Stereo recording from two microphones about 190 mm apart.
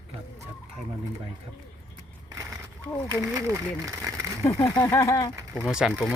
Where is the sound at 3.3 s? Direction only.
15° right (ahead or behind).